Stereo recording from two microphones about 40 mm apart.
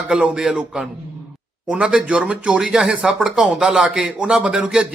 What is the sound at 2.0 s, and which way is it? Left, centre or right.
A man's voice, right.